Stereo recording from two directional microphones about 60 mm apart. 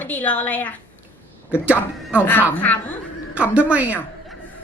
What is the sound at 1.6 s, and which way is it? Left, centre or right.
Speech, right.